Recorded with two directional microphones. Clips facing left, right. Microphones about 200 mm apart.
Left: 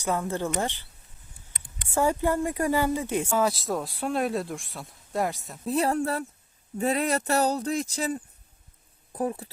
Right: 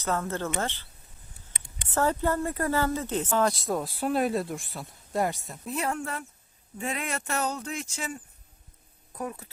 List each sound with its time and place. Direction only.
0.0 s speech: 15° left (ahead or behind)
1.9 s speech: 10° left (ahead or behind)
5.6 s speech: 35° left (ahead or behind)